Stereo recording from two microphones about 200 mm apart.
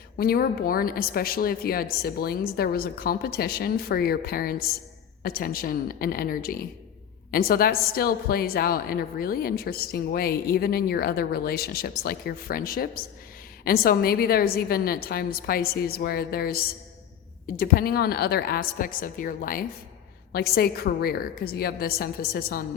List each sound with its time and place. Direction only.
0.2 s a woman's voice: 50° left (ahead or behind)